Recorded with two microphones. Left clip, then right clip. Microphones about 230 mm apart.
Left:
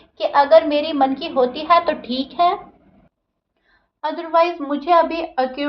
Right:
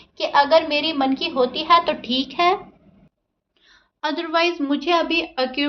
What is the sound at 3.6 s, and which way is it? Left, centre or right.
A woman's voice, right.